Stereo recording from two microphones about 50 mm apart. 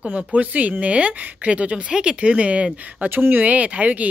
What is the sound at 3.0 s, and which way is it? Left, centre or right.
Speech, right.